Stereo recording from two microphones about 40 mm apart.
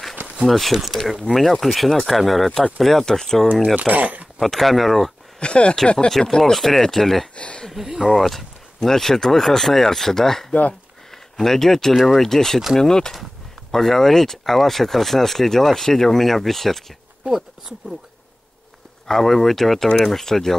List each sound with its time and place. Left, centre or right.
0.5 s speech: centre
3.7 s speech: right
4.4 s speech: centre
5.4 s speech: left; by 7.2 s centre
7.3 s speech: left
8.1 s speech: centre
11.9 s speech: centre
12.2 s speech: centre
19.0 s speech: centre